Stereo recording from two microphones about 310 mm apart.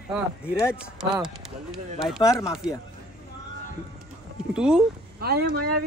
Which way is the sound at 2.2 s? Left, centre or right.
Centre.